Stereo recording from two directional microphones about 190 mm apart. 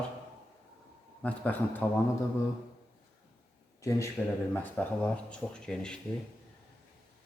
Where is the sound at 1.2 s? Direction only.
10° left (ahead or behind).